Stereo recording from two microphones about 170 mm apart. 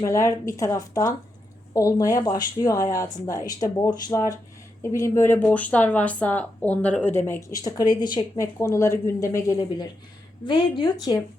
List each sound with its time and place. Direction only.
0.0 s speech: 20° left (ahead or behind)
10.4 s speech: 30° left (ahead or behind)